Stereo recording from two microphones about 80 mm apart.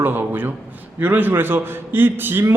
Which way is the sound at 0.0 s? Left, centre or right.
Right.